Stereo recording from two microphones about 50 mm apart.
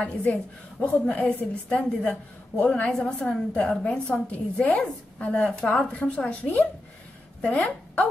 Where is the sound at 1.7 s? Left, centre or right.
Left.